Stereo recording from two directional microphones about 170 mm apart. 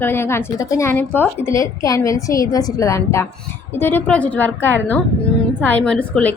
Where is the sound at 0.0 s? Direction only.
15° left (ahead or behind).